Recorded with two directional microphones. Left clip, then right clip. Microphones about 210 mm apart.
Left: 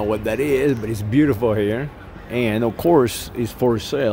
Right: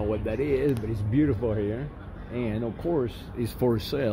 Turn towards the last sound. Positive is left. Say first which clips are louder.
# left 7 dB
turn(degrees=15)  # may be behind; listen again after turning